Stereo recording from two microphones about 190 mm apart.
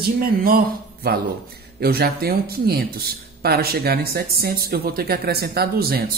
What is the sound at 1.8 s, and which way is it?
A woman's voice, 55° right (ahead or behind).